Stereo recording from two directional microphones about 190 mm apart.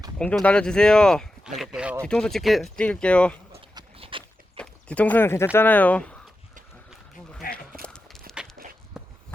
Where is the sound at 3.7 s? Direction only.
30° right (ahead or behind).